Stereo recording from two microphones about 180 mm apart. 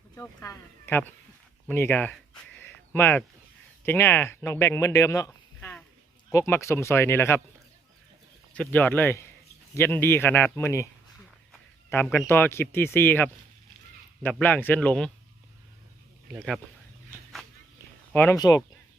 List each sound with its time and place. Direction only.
0.2 s speech: 15° left (ahead or behind)
1.6 s a sound: 10° left (ahead or behind)
3.8 s speech: 15° left (ahead or behind)
8.5 s speech: 10° left (ahead or behind)
12.0 s speech: 10° left (ahead or behind)
18.1 s speech: 10° left (ahead or behind)
18.3 s speech: 20° left (ahead or behind)